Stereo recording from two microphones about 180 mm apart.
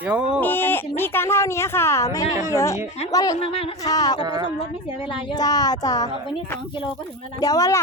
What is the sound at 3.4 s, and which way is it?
Speech, 30° left (ahead or behind).